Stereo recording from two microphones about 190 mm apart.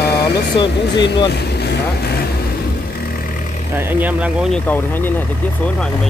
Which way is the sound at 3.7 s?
10° right (ahead or behind).